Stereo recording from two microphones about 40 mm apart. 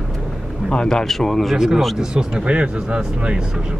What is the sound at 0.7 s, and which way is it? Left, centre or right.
Speech, left.